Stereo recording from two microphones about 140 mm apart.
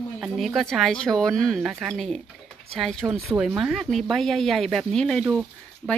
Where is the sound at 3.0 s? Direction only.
20° right (ahead or behind).